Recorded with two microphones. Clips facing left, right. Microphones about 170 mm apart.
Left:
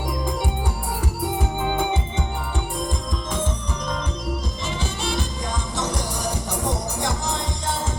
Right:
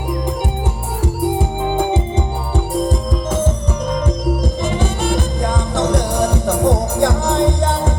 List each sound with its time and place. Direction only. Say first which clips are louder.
1.0 s organ: right 9 dB; 30° right (ahead or behind)
4.6 s music: right 7 dB; 50° right (ahead or behind)